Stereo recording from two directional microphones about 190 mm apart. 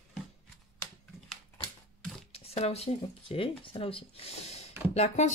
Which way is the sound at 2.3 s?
30° left (ahead or behind).